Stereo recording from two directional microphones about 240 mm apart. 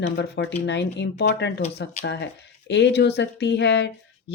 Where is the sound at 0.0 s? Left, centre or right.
Left.